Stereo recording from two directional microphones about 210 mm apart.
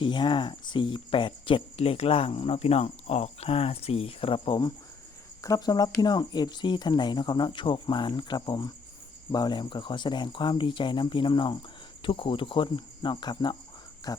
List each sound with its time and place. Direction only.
0.0 s speech: 20° left (ahead or behind)